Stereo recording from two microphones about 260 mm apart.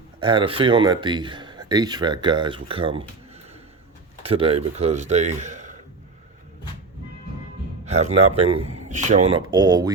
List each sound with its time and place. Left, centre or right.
0.2 s speech: centre
4.2 s speech: right
7.9 s a man's voice: right